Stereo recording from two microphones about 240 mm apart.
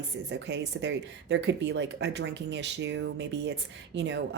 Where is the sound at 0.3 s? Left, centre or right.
Right.